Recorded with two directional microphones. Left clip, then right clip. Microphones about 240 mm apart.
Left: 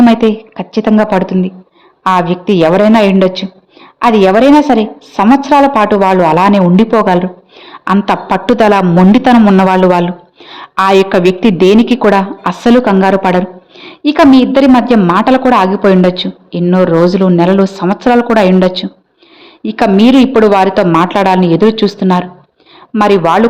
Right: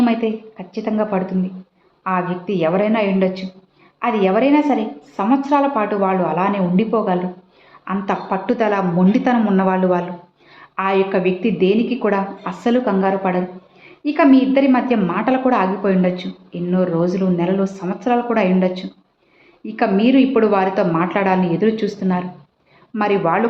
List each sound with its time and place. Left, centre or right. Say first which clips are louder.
0.0 s a woman's voice: left 10 dB; left